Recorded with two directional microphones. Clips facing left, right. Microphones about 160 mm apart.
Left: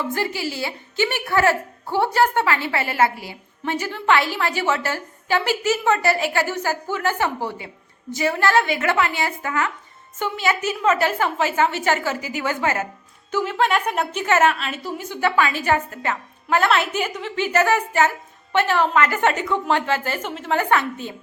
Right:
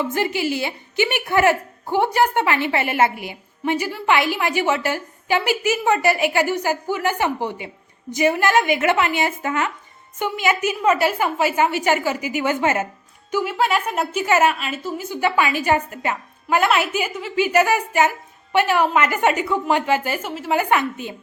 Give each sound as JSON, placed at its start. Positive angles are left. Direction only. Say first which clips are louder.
{"t": 0.0, "sound": "a woman's voice", "louder": "right 3 dB", "side_deg": -20}
{"t": 13.3, "sound": "a woman's voice", "louder": "even", "side_deg": -10}